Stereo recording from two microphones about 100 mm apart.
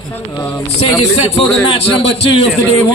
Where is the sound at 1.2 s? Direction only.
90° left.